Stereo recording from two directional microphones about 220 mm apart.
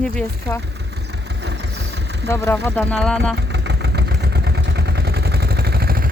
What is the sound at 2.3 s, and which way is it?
Speech, 10° left (ahead or behind).